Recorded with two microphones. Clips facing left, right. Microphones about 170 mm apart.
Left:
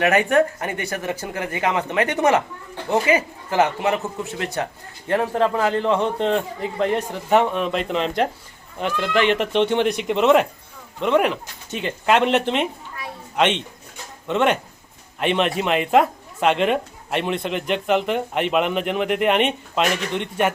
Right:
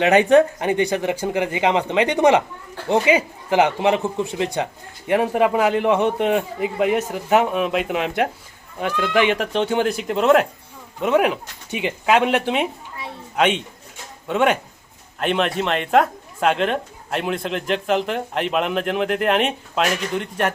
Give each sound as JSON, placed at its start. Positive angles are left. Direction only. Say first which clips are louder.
{"t": 0.0, "sound": "a man's voice", "louder": "right 4 dB", "side_deg": -20}